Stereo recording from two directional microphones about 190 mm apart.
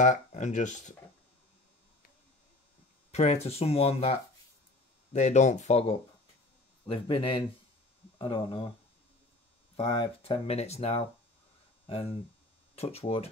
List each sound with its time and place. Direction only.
0.0 s speech: 40° left (ahead or behind)
3.1 s hum: 35° left (ahead or behind)
3.4 s speech: 35° left (ahead or behind)
9.8 s speech: 30° left (ahead or behind)